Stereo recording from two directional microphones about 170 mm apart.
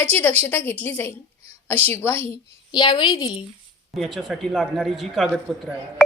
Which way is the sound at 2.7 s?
25° left (ahead or behind).